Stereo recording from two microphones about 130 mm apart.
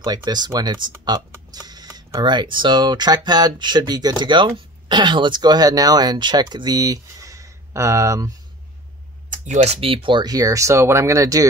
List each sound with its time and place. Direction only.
0.0 s speech: 30° right (ahead or behind)
9.3 s speech: 65° right (ahead or behind); by 11.4 s 25° right (ahead or behind)